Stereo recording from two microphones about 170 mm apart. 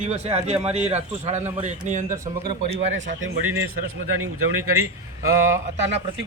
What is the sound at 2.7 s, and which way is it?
Speech, 45° right (ahead or behind).